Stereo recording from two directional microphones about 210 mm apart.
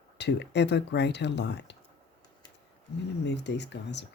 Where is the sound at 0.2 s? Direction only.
55° left (ahead or behind).